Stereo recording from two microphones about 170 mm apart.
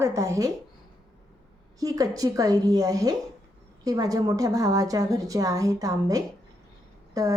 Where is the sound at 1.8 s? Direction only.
20° right (ahead or behind).